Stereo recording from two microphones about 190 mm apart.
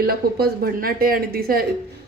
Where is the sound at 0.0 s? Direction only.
50° right (ahead or behind).